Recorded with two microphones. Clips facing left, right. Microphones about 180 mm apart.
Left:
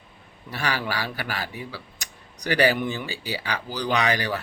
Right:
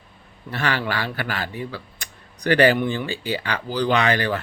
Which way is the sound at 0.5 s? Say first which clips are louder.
Right 3 dB; 10° left (ahead or behind).